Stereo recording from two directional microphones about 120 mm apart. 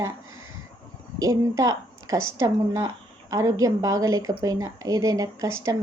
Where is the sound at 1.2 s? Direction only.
30° right (ahead or behind).